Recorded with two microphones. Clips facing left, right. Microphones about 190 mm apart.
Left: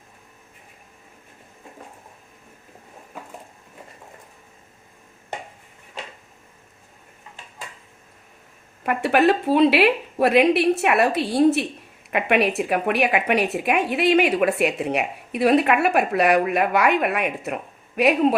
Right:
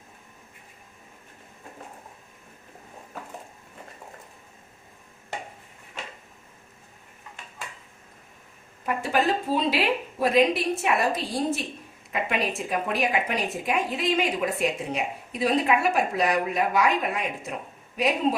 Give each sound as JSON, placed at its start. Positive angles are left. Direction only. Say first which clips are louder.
{"t": 8.8, "sound": "speech", "louder": "left 6 dB", "side_deg": 70}